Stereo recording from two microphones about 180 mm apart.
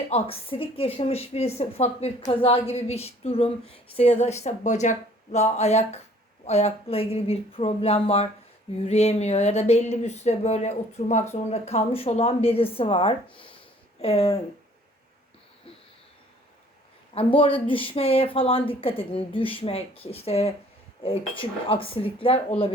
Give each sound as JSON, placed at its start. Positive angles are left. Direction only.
{"t": 0.1, "sound": "a woman's voice", "side_deg": 30}
{"t": 17.2, "sound": "a woman's voice", "side_deg": 30}